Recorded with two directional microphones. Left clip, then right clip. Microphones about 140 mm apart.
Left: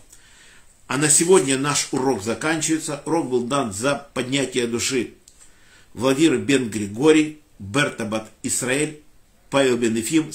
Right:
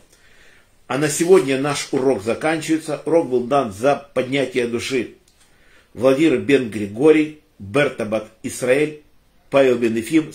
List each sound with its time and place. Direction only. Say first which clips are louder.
0.8 s speech: right 2 dB; 20° left (ahead or behind)
5.9 s speech: right 3 dB; 20° left (ahead or behind)